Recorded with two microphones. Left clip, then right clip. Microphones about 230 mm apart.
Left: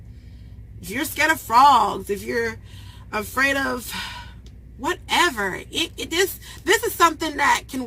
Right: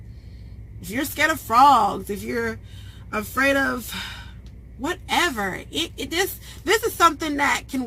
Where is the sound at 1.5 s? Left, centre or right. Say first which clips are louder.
Even; centre.